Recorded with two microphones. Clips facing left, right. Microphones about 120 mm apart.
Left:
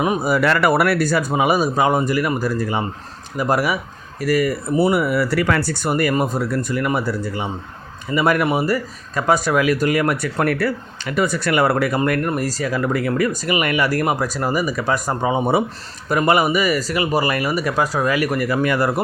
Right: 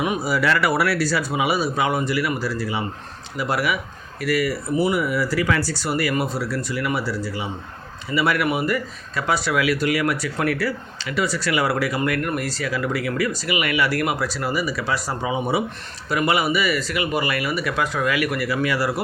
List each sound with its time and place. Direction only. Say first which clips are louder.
0.2 s speech: left 4 dB; 50° left (ahead or behind)